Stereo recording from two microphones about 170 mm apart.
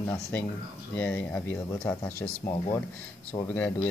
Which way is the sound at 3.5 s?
10° left (ahead or behind).